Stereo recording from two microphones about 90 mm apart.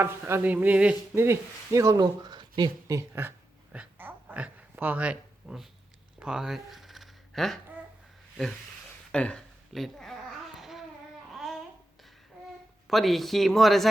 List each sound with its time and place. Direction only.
0.0 s speech: 25° right (ahead or behind)
1.1 s speech: 25° right (ahead or behind); by 2.6 s 60° right (ahead or behind)
2.8 s speech: 40° right (ahead or behind)
3.1 s speech: 25° right (ahead or behind)
3.7 s a sound: 20° right (ahead or behind)
4.7 s speech: 20° right (ahead or behind)
6.1 s a sound: 10° right (ahead or behind)
9.1 s speech: 10° left (ahead or behind)
10.6 s babbling: centre (ahead or behind)
12.9 s speech: centre (ahead or behind)